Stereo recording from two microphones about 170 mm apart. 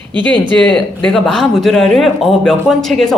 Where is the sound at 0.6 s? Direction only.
5° left (ahead or behind).